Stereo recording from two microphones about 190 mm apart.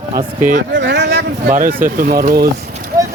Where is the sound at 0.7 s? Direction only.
70° right (ahead or behind).